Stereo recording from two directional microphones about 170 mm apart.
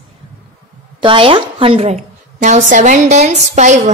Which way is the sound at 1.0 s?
30° right (ahead or behind).